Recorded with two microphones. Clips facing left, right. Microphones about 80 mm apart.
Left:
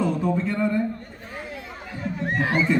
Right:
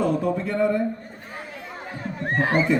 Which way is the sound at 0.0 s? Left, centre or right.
Right.